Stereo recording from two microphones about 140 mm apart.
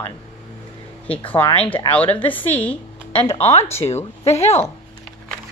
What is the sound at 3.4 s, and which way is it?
Speech, 50° left (ahead or behind).